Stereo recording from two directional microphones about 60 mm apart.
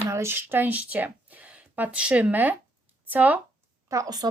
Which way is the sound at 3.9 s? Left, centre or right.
Right.